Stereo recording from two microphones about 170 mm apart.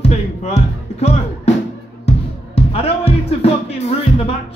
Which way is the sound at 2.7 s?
35° left (ahead or behind).